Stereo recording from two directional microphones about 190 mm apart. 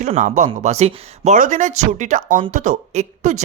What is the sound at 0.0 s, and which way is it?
Speech, 40° right (ahead or behind).